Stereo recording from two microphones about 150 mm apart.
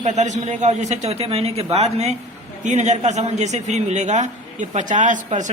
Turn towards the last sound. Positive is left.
turn(degrees=-55)  # may be behind; listen again after turning